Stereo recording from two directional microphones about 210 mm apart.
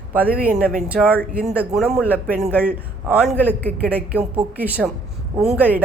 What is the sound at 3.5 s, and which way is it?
Speech, 5° left (ahead or behind).